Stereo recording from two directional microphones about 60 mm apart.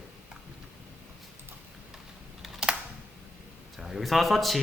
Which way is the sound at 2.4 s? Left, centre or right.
Centre.